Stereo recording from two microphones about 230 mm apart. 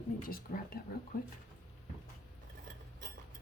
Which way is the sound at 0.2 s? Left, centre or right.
Left.